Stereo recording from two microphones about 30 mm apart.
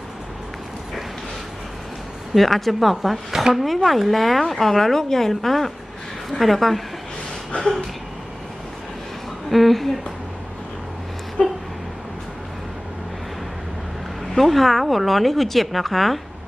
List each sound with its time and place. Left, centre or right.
2.3 s speech: centre
2.9 s a woman's voice: centre
7.5 s a sound: left
9.5 s speech: centre
11.4 s vehicle: left
14.3 s speech: centre